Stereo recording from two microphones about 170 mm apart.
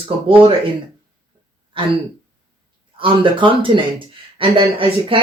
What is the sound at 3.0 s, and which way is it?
Speech, 30° right (ahead or behind).